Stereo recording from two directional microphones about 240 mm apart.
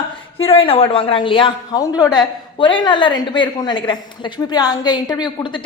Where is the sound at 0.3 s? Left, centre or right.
Left.